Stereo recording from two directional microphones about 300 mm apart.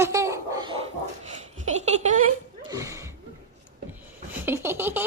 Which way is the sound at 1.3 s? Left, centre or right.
Right.